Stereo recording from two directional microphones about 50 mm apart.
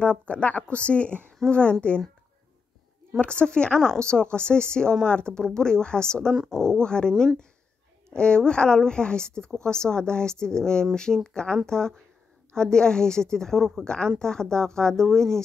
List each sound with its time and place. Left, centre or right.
0.0 s speech: left
3.2 s speech: left
11.1 s speech: centre
11.6 s speech: centre